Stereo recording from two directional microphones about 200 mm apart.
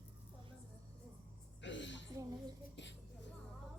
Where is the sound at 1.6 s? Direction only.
65° left (ahead or behind).